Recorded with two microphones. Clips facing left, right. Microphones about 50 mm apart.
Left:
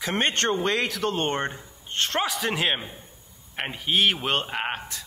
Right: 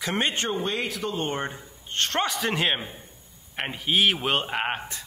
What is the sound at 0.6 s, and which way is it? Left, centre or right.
Speech, left.